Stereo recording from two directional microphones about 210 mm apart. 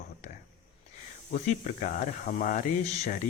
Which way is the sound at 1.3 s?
35° left (ahead or behind).